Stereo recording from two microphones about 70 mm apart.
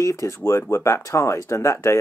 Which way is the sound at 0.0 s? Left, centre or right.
Left.